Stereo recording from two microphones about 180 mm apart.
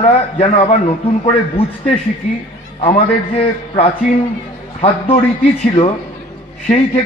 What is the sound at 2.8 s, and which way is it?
A man's voice, 35° left (ahead or behind).